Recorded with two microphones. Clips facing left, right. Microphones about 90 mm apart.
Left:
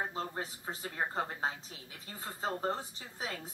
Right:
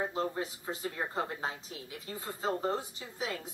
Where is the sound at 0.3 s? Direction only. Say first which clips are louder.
Right 3 dB; 35° left (ahead or behind).